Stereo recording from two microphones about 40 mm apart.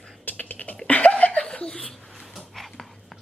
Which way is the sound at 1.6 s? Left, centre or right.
Left.